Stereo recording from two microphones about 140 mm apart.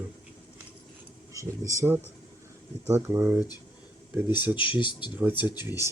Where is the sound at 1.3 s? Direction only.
20° right (ahead or behind).